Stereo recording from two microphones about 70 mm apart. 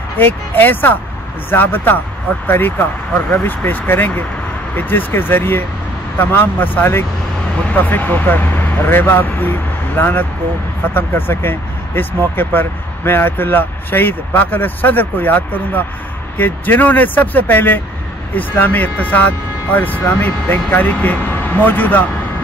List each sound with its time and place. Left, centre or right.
0.2 s speech: left